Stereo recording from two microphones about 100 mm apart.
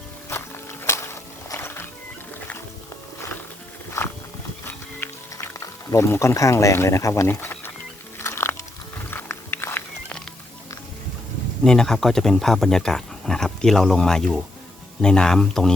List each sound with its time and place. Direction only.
0.9 s music: 25° left (ahead or behind)
4.0 s wild animals: 30° left (ahead or behind)
4.9 s music: 30° left (ahead or behind)
8.2 s biting: 25° left (ahead or behind)
9.0 s wild animals: 20° left (ahead or behind)
11.6 s speech: 5° left (ahead or behind)